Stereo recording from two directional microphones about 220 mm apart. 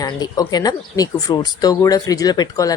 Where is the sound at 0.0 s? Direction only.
15° left (ahead or behind).